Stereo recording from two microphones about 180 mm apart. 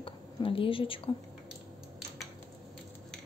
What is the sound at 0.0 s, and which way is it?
A woman's voice, 30° left (ahead or behind).